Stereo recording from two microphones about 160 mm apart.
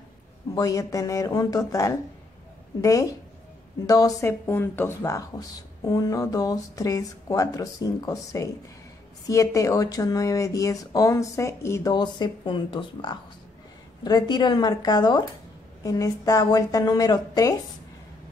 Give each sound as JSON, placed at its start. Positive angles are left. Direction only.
{"t": 0.6, "sound": "speech", "side_deg": 20}